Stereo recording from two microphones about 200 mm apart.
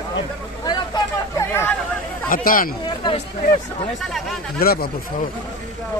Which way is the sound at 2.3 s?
45° left (ahead or behind).